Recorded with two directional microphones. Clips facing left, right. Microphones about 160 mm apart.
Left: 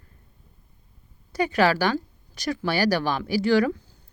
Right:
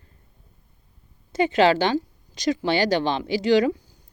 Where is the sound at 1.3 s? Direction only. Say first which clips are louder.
Right 3 dB; 25° right (ahead or behind).